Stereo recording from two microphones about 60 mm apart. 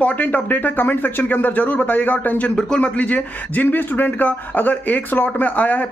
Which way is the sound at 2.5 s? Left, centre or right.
Centre.